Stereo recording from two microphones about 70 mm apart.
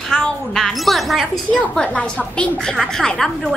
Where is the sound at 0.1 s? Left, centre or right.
Centre.